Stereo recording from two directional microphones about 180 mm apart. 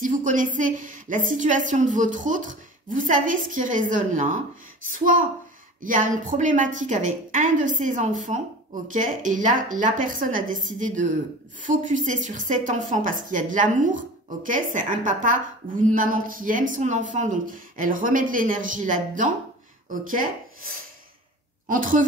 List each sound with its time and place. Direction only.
0.0 s a woman's voice: 45° right (ahead or behind)
21.6 s a woman's voice: 50° right (ahead or behind)